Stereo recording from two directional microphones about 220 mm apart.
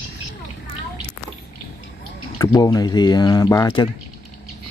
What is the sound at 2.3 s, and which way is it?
Speech, 15° left (ahead or behind).